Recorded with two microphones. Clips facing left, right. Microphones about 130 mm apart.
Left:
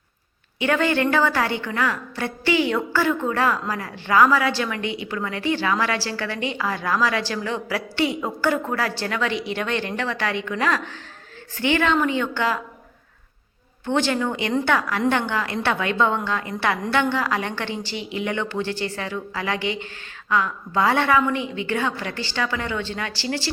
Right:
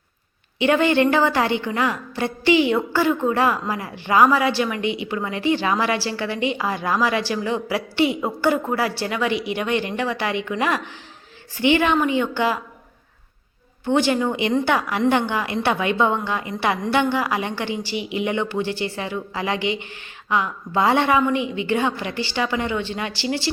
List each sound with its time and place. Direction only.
0.6 s a woman's voice: 20° right (ahead or behind)
13.8 s a woman's voice: 15° right (ahead or behind)